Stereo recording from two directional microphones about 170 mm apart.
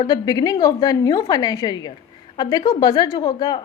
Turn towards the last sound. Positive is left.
turn(degrees=25)  # may be behind; listen again after turning